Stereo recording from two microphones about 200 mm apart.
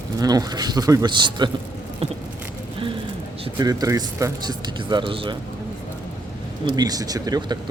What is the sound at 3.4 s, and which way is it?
Speech, 20° right (ahead or behind).